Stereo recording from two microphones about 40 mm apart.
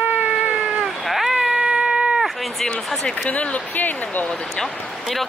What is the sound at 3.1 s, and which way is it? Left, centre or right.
Speech, left.